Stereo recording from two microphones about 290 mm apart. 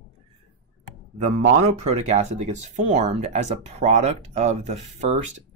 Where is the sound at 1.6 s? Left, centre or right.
Right.